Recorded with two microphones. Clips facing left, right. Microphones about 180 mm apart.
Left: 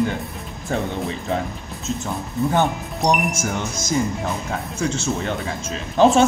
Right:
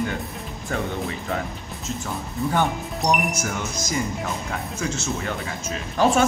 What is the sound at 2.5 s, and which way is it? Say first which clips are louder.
Speech: left 2 dB; 20° left (ahead or behind).